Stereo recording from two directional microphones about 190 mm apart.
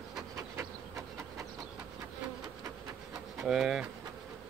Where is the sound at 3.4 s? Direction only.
Centre (ahead or behind).